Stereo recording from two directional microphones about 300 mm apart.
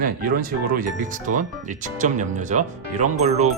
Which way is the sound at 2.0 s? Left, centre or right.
Right.